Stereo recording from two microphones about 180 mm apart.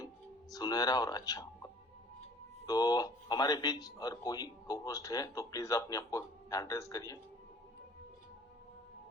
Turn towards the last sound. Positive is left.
turn(degrees=20)  # may be behind; listen again after turning